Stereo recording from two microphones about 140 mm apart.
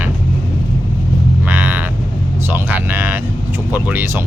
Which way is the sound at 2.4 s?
15° right (ahead or behind).